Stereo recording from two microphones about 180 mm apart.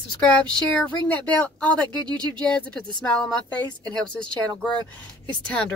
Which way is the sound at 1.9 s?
25° right (ahead or behind).